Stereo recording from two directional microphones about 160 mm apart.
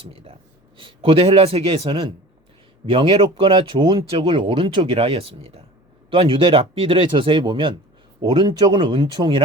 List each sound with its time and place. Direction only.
0.0 s speech: 35° right (ahead or behind)